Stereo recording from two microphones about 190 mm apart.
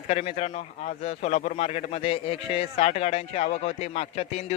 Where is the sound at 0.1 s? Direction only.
35° left (ahead or behind).